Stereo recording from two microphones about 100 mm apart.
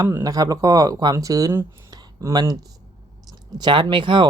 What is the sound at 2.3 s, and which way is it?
Speech, 35° right (ahead or behind).